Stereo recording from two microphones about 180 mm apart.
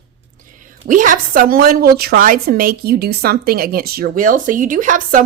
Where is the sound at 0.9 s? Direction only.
45° right (ahead or behind).